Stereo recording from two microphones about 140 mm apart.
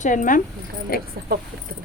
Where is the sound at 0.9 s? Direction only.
90° left.